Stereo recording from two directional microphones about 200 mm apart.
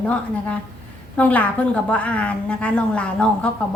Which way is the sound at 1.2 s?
5° left (ahead or behind).